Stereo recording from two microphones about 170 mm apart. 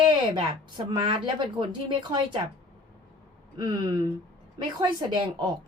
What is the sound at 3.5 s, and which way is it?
A woman's voice, 25° right (ahead or behind).